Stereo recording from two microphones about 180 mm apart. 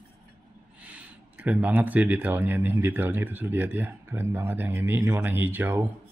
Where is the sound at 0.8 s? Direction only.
10° right (ahead or behind).